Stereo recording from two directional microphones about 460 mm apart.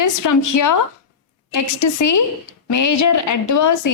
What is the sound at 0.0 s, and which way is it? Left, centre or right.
A woman's voice, left.